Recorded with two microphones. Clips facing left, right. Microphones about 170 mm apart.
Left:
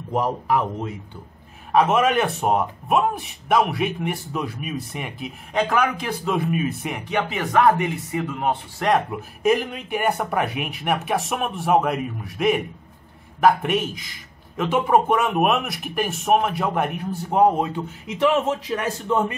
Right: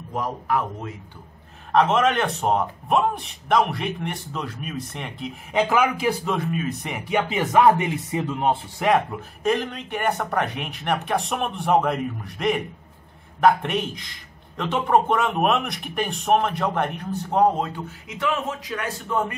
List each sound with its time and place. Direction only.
1.7 s a man's voice: 10° left (ahead or behind)
5.5 s speech: 5° right (ahead or behind)
6.3 s a man's voice: 15° left (ahead or behind)
6.8 s a man's voice: centre (ahead or behind)
7.2 s speech: 15° right (ahead or behind)
9.4 s a man's voice: 10° left (ahead or behind)
18.3 s a man's voice: 25° left (ahead or behind)